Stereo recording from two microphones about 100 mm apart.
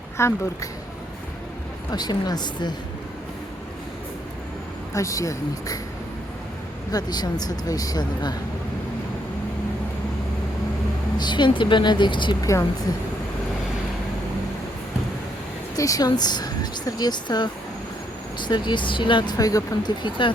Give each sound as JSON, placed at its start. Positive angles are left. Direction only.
{"t": 0.2, "sound": "speech", "side_deg": 25}
{"t": 1.9, "sound": "speech", "side_deg": 40}
{"t": 4.9, "sound": "speech", "side_deg": 35}
{"t": 6.9, "sound": "speech", "side_deg": 45}
{"t": 11.2, "sound": "speech", "side_deg": 50}
{"t": 15.7, "sound": "speech", "side_deg": 35}